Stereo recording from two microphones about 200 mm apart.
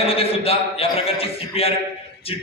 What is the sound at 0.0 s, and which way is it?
A man's voice, 30° left (ahead or behind).